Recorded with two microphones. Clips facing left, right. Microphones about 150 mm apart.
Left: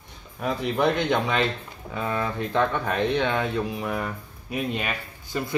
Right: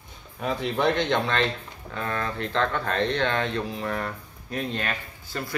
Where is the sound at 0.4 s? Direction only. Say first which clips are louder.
Left 1 dB; centre (ahead or behind).